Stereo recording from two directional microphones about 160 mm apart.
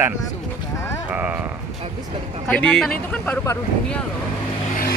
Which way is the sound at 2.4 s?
5° left (ahead or behind).